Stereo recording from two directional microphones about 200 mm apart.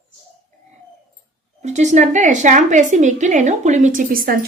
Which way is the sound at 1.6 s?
35° right (ahead or behind).